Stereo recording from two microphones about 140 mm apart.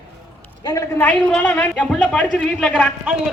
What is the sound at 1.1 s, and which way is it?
A woman's voice, 10° left (ahead or behind).